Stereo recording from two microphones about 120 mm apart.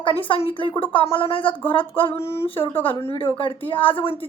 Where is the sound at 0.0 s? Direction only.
50° left (ahead or behind).